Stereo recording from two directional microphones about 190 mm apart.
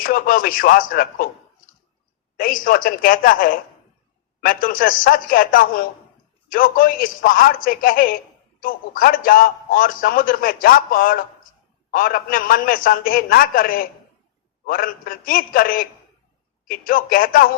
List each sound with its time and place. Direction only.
0.0 s a man's voice: 50° left (ahead or behind)
2.3 s a man's voice: 50° left (ahead or behind)